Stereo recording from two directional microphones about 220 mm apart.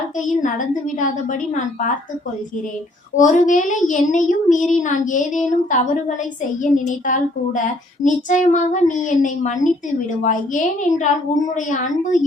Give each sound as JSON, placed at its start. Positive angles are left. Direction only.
{"t": 0.4, "sound": "speech", "side_deg": 35}
{"t": 3.2, "sound": "speech", "side_deg": 35}